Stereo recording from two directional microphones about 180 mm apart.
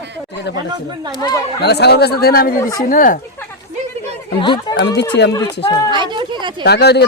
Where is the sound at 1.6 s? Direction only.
65° left (ahead or behind); by 3.2 s 50° left (ahead or behind).